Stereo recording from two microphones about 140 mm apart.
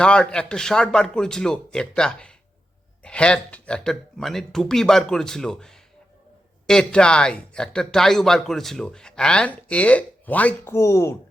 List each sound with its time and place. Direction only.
0.0 s speech: 5° left (ahead or behind)